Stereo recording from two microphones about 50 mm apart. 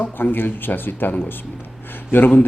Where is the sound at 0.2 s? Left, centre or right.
Left.